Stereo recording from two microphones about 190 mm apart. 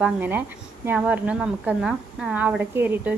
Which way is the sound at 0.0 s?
10° right (ahead or behind).